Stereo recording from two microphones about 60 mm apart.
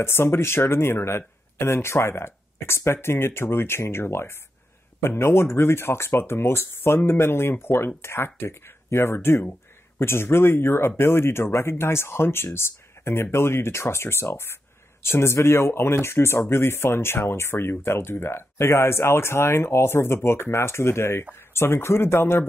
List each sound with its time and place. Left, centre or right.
0.0 s speech: left